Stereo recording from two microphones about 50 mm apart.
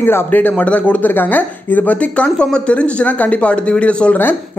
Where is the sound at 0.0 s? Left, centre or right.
Left.